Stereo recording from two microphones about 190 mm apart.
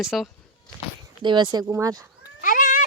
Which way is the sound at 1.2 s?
25° right (ahead or behind).